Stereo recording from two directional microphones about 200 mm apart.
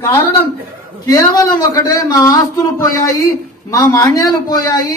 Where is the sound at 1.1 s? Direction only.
20° left (ahead or behind).